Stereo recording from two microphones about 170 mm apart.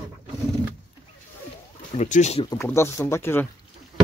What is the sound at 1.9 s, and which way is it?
Speech, 40° left (ahead or behind).